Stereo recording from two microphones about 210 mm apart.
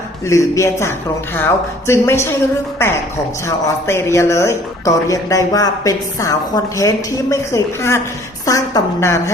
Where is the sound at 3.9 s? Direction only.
10° left (ahead or behind).